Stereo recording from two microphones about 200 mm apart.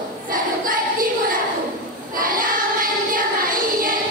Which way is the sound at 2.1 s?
45° right (ahead or behind).